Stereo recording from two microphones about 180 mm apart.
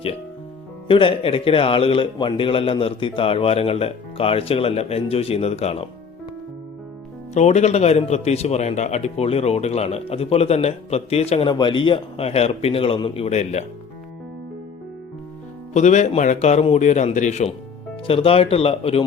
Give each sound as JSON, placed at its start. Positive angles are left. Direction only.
{"t": 0.9, "sound": "a man's voice", "side_deg": 30}
{"t": 7.3, "sound": "a man's voice", "side_deg": 40}
{"t": 15.7, "sound": "a man's voice", "side_deg": 40}